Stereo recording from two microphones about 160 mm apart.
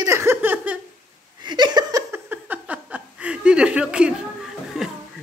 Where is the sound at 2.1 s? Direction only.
10° right (ahead or behind).